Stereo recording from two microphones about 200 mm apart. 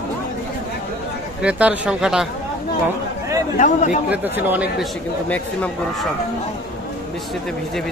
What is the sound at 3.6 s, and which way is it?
Speech, 40° left (ahead or behind).